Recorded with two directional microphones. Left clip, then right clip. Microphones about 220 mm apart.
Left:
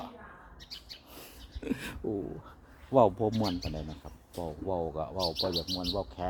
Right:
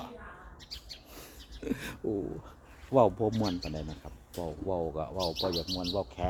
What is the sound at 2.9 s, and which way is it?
Speech, 15° left (ahead or behind).